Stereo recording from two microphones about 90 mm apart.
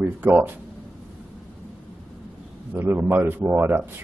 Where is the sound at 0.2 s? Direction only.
25° right (ahead or behind).